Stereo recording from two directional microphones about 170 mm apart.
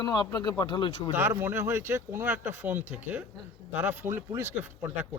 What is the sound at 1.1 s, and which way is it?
Speech, 15° right (ahead or behind).